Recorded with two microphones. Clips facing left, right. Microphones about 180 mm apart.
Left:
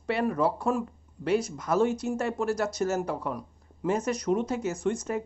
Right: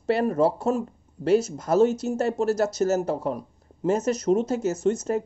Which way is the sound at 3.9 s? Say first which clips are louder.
Right 5 dB; 25° right (ahead or behind).